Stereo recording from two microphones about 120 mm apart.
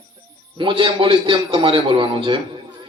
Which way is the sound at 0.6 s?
45° right (ahead or behind).